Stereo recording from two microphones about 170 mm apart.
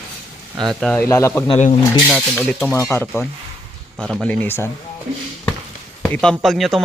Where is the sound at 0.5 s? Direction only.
25° right (ahead or behind).